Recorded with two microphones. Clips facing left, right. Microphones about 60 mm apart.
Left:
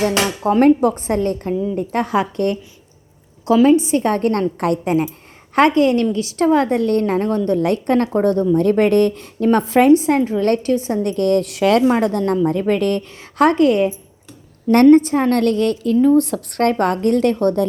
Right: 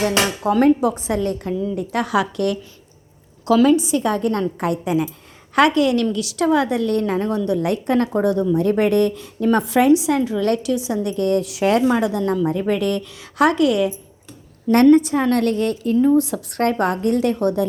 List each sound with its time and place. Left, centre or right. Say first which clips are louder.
0.4 s a woman's voice: left 3 dB; left
5.5 s a woman's voice: left 2 dB; left
11.9 s a woman's voice: left 2 dB; left